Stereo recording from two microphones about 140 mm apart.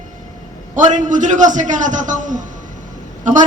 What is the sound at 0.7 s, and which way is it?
A man's voice, 65° right (ahead or behind).